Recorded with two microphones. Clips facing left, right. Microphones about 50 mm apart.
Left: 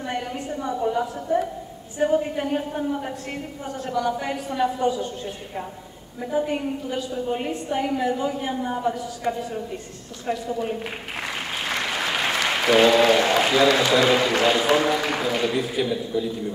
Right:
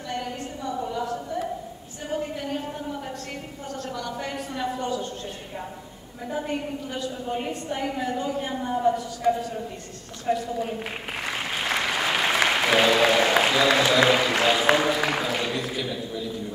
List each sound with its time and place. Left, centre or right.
0.1 s a sound: left
2.0 s a woman's voice: left
3.7 s a woman's voice: centre
6.2 s a woman's voice: centre
11.5 s applause: centre
12.4 s speech: centre
15.0 s a sound: centre
15.7 s a woman's voice: centre